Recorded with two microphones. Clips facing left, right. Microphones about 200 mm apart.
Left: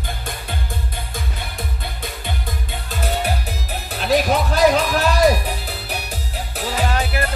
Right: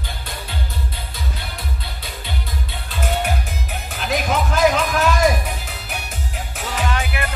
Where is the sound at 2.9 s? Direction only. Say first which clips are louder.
Even; 35° left (ahead or behind).